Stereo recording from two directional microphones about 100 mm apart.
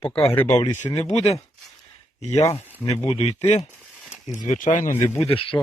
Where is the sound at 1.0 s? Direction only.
90° left.